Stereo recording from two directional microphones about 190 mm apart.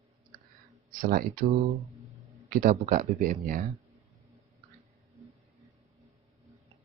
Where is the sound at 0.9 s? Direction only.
50° right (ahead or behind).